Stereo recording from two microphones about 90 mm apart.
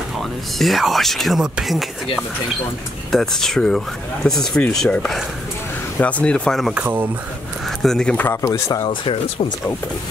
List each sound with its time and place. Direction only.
0.2 s speech: centre (ahead or behind)
3.1 s speech: 5° left (ahead or behind)
6.7 s speech: 20° right (ahead or behind)
7.8 s speech: 5° left (ahead or behind)
8.4 s speech: 35° left (ahead or behind)
8.8 s speech: 75° left (ahead or behind)